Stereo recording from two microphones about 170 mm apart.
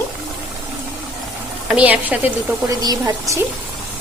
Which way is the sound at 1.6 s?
10° right (ahead or behind).